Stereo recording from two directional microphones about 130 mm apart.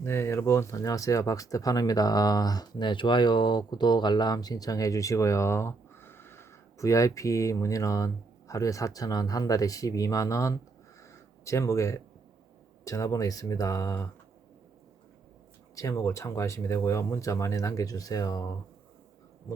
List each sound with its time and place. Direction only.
0.0 s speech: 20° left (ahead or behind)
15.7 s speech: 25° left (ahead or behind)